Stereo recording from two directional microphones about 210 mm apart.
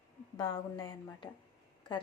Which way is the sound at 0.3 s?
20° left (ahead or behind).